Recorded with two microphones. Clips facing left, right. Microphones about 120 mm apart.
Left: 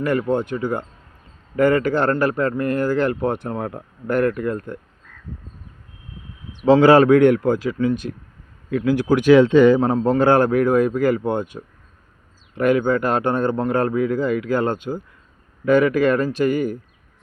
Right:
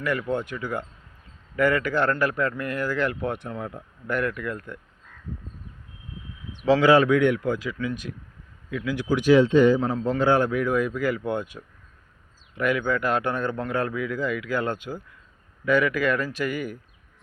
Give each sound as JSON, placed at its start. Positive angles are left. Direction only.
{"t": 0.0, "sound": "speech", "side_deg": 35}
{"t": 3.5, "sound": "speech", "side_deg": 55}
{"t": 4.1, "sound": "speech", "side_deg": 40}
{"t": 6.7, "sound": "speech", "side_deg": 35}
{"t": 9.8, "sound": "speech", "side_deg": 45}
{"t": 15.6, "sound": "speech", "side_deg": 35}